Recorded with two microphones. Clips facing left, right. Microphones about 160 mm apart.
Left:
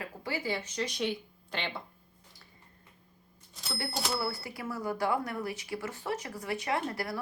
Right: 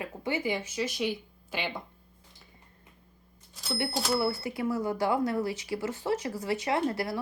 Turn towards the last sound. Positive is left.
turn(degrees=-25)  # may be behind; listen again after turning